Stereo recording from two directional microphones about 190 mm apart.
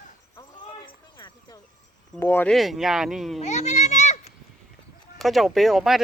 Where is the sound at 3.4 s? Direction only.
40° left (ahead or behind).